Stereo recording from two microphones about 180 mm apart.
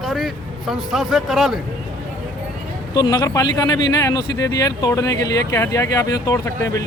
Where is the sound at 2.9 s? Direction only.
20° left (ahead or behind).